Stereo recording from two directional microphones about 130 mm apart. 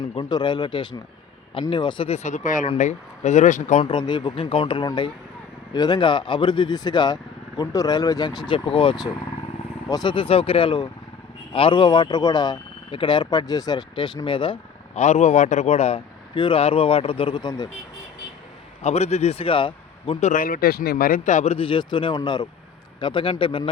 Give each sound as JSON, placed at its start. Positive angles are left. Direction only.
{"t": 0.0, "sound": "speech", "side_deg": 40}
{"t": 2.0, "sound": "speech", "side_deg": 60}
{"t": 2.7, "sound": "speech", "side_deg": 65}
{"t": 3.8, "sound": "speech", "side_deg": 35}
{"t": 14.9, "sound": "speech", "side_deg": 60}
{"t": 16.3, "sound": "speech", "side_deg": 40}
{"t": 18.8, "sound": "a man's voice", "side_deg": 55}
{"t": 20.1, "sound": "speech", "side_deg": 75}
{"t": 21.1, "sound": "speech", "side_deg": 65}